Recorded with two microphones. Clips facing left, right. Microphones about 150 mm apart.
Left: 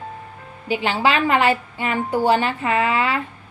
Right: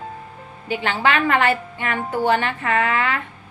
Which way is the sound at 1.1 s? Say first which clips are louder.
Left 1 dB; 20° left (ahead or behind).